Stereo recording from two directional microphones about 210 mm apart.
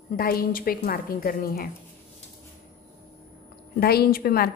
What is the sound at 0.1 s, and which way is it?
A woman's voice, 45° left (ahead or behind).